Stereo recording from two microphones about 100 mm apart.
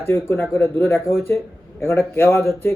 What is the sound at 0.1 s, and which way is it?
Speech, 25° left (ahead or behind).